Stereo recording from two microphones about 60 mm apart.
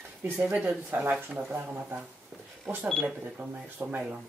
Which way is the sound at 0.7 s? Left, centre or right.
Right.